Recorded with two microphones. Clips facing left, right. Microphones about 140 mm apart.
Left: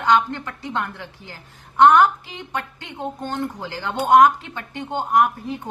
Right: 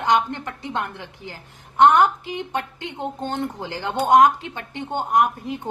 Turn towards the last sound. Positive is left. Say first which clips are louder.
# left 1 dB
turn(degrees=-20)  # may be behind; listen again after turning